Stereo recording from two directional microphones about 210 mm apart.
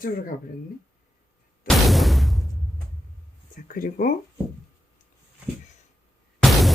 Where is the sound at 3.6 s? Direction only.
40° left (ahead or behind).